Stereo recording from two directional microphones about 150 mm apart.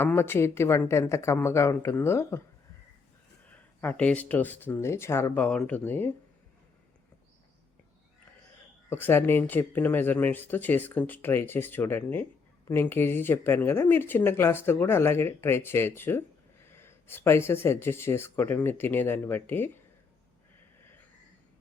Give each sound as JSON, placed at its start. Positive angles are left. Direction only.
{"t": 0.0, "sound": "speech", "side_deg": 15}
{"t": 3.5, "sound": "speech", "side_deg": 10}
{"t": 8.9, "sound": "speech", "side_deg": 15}